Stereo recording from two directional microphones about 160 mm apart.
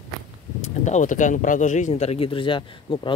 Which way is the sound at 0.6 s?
50° left (ahead or behind).